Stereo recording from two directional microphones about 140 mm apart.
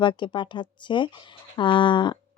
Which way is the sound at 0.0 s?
35° left (ahead or behind).